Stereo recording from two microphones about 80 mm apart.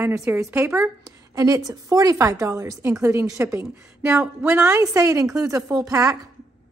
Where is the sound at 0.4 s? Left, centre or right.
Right.